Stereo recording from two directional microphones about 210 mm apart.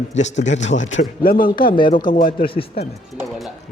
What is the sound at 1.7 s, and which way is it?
Speech, 25° left (ahead or behind).